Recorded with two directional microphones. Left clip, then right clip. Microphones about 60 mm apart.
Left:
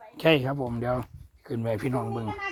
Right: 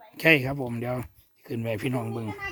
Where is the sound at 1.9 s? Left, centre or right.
Right.